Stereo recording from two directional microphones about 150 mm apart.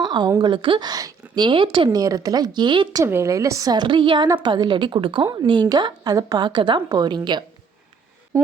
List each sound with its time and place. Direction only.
0.0 s a woman's voice: 30° right (ahead or behind)
3.0 s a woman's voice: 15° right (ahead or behind)